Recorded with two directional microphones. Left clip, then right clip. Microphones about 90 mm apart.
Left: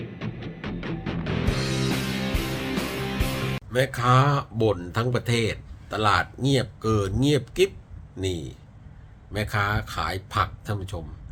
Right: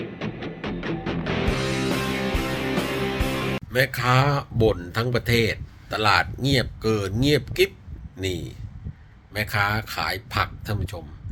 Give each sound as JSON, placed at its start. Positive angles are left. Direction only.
{"t": 0.0, "sound": "music", "side_deg": 0}
{"t": 3.7, "sound": "a man's voice", "side_deg": 30}